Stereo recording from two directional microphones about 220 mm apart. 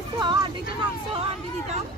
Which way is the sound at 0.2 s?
20° right (ahead or behind).